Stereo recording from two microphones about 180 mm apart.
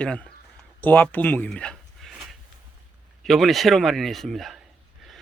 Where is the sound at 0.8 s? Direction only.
10° left (ahead or behind).